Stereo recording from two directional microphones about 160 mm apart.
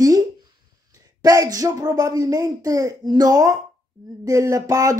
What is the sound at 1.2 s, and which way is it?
A woman's voice, 25° right (ahead or behind).